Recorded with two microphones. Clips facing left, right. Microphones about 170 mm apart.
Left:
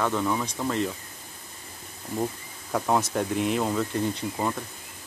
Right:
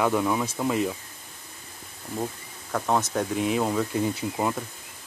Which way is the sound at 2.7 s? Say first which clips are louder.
Even; 5° left (ahead or behind).